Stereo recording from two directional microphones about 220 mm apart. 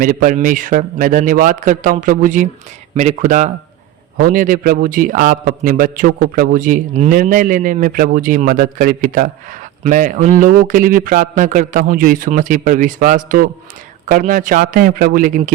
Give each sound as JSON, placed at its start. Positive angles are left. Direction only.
{"t": 0.0, "sound": "a man's voice", "side_deg": -40}